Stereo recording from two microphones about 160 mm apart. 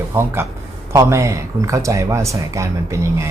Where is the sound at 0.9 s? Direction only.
20° right (ahead or behind).